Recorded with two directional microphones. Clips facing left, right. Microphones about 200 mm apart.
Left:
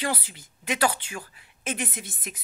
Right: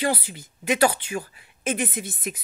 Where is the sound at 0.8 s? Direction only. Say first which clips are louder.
Right 4 dB; 25° right (ahead or behind).